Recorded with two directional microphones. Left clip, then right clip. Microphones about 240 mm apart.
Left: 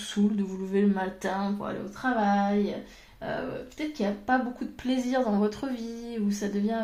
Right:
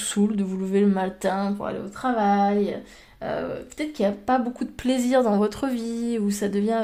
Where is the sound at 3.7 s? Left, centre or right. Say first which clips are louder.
Right 7 dB; right.